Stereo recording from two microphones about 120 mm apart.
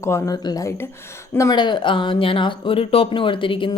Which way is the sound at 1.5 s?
40° left (ahead or behind).